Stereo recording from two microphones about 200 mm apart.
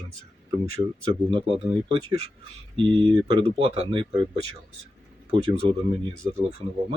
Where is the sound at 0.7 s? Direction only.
30° right (ahead or behind).